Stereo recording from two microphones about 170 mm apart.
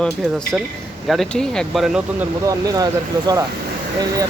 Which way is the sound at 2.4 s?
20° right (ahead or behind).